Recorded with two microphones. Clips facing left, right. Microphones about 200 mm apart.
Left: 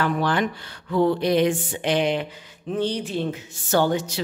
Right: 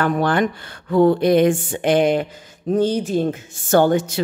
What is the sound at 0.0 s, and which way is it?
Speech, 50° right (ahead or behind).